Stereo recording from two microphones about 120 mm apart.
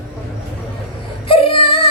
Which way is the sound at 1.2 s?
50° left (ahead or behind).